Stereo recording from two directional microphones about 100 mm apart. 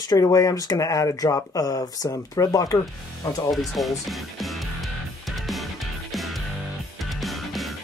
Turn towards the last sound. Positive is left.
turn(degrees=0)  # may be behind; listen again after turning